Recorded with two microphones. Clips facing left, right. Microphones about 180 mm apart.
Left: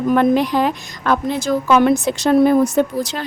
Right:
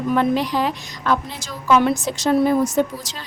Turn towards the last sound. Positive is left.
turn(degrees=60)  # may be behind; listen again after turning